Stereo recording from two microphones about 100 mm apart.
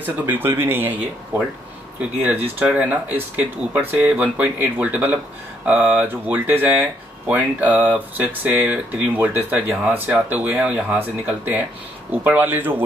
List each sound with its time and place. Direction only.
0.0 s speech: 20° right (ahead or behind)
2.0 s speech: 15° right (ahead or behind)